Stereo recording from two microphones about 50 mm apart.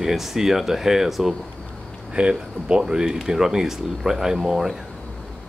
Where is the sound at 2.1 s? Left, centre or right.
Centre.